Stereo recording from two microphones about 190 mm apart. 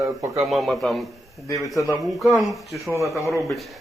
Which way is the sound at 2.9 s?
15° right (ahead or behind).